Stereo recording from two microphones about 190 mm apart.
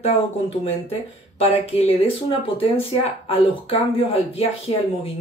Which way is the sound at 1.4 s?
30° left (ahead or behind).